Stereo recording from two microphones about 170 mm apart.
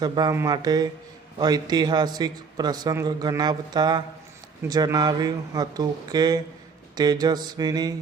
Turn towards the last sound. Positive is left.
turn(degrees=-25)  # may be behind; listen again after turning